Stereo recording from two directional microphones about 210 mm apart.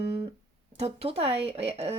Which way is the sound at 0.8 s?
30° right (ahead or behind).